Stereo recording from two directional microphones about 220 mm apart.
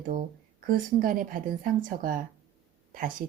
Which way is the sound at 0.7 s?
40° right (ahead or behind).